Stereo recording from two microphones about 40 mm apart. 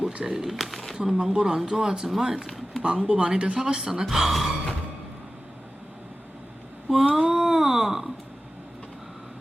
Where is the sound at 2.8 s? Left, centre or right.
Right.